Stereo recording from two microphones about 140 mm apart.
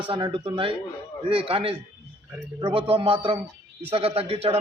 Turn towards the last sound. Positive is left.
turn(degrees=-45)  # may be behind; listen again after turning